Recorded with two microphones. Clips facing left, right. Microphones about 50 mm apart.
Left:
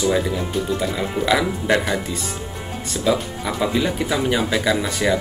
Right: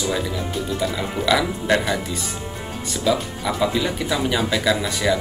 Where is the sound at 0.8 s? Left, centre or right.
Centre.